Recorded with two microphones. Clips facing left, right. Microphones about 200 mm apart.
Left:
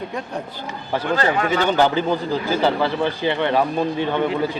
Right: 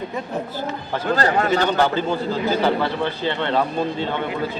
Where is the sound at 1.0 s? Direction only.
40° right (ahead or behind).